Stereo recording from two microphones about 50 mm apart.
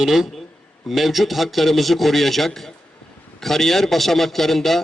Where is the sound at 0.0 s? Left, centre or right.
Centre.